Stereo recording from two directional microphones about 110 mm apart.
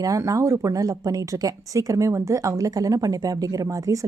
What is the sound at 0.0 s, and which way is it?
A woman's voice, 30° right (ahead or behind).